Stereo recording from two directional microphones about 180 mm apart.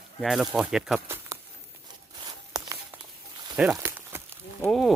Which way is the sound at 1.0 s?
15° right (ahead or behind).